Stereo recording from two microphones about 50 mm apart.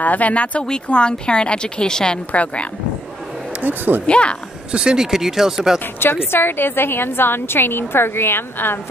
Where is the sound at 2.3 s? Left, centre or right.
Left.